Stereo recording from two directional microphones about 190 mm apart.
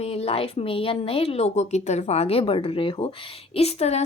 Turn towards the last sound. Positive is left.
turn(degrees=35)  # may be behind; listen again after turning